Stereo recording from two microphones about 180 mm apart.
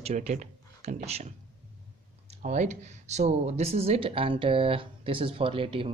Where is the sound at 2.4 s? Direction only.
40° right (ahead or behind).